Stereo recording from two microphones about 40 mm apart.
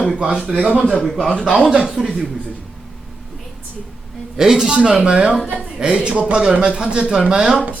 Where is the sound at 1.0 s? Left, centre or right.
Centre.